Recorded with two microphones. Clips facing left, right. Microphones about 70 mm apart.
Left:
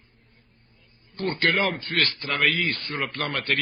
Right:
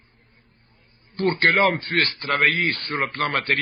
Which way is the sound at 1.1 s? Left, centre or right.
Right.